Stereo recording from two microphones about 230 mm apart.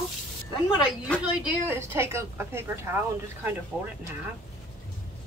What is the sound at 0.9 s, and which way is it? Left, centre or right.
A woman's voice, centre.